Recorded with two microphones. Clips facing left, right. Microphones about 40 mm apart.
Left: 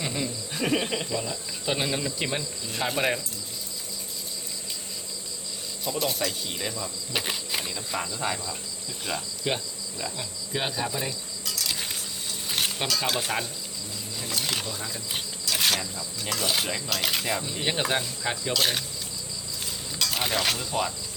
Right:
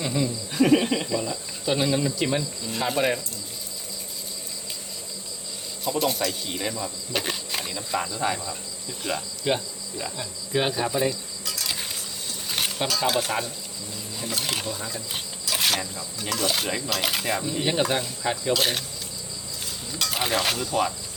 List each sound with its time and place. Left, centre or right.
0.0 s speech: centre
1.2 s speech: centre
1.7 s speech: centre
5.8 s speech: centre
7.1 s wild animals: centre
7.9 s speech: centre
12.5 s speech: centre
14.2 s a sound: centre
16.2 s speech: centre
17.5 s speech: centre
18.5 s speech: centre
20.0 s speech: centre